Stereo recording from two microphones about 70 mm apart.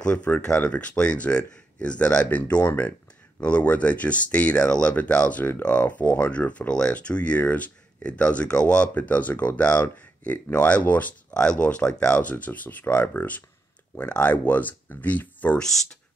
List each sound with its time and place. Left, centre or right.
0.0 s speech: centre
2.2 s speech: left
3.3 s speech: centre
15.6 s speech: centre